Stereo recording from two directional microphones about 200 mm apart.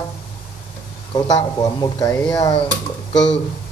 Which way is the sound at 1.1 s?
20° left (ahead or behind).